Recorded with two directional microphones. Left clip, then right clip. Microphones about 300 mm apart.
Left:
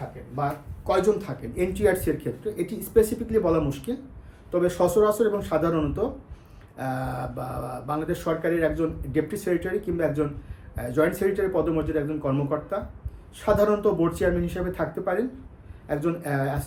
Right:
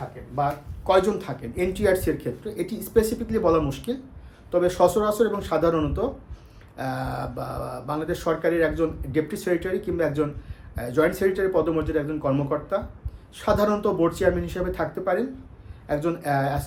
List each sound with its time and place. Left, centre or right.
1.2 s speech: centre